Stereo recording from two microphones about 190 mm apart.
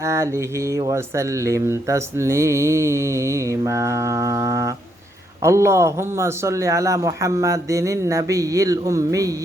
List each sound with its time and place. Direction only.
0.0 s speech: 15° right (ahead or behind)